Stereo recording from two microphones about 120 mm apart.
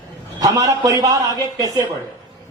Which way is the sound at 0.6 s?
30° right (ahead or behind).